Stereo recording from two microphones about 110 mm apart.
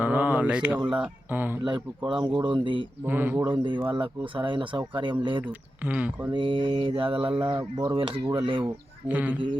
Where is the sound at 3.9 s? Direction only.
45° right (ahead or behind).